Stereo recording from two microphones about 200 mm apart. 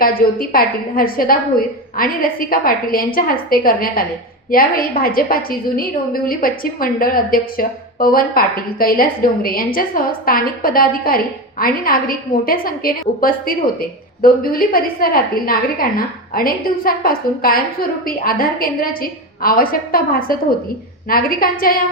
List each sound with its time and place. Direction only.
0.0 s a woman's voice: 45° left (ahead or behind)